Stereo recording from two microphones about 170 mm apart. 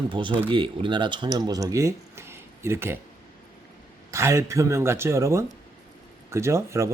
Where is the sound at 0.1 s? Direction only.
30° right (ahead or behind).